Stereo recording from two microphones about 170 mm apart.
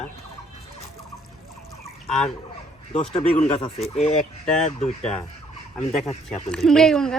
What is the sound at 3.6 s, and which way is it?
Speech, 35° left (ahead or behind).